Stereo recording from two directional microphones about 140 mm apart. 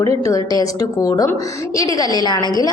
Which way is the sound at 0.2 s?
25° left (ahead or behind).